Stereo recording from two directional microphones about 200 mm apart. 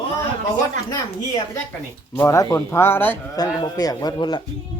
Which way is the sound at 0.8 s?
20° left (ahead or behind).